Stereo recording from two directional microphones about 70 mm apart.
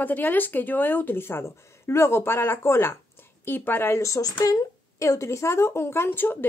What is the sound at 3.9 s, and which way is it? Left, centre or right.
Speech, left.